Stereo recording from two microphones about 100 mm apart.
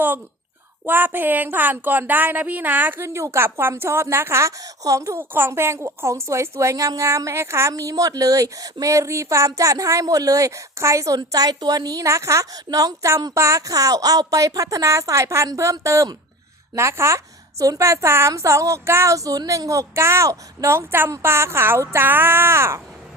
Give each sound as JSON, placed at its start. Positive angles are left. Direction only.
{"t": 0.9, "sound": "a woman's voice", "side_deg": -20}